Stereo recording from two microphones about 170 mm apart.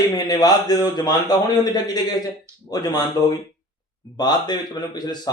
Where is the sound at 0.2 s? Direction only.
25° left (ahead or behind).